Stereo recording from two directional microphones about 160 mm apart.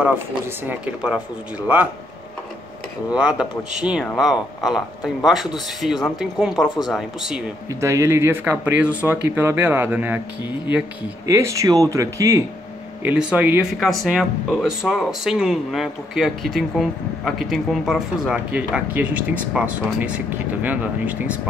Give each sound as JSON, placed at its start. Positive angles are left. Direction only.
{"t": 0.7, "sound": "speech", "side_deg": -5}
{"t": 3.2, "sound": "speech", "side_deg": -5}
{"t": 7.8, "sound": "speech", "side_deg": -15}
{"t": 11.2, "sound": "speech", "side_deg": -20}
{"t": 13.0, "sound": "speech", "side_deg": -10}